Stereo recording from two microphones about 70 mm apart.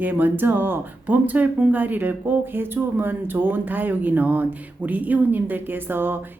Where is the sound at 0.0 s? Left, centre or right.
Right.